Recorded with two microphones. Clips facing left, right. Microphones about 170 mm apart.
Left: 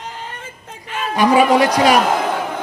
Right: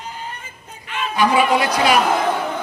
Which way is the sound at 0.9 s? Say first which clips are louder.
Left 3 dB; 40° left (ahead or behind).